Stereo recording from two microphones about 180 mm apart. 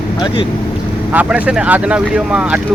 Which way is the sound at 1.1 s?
5° right (ahead or behind).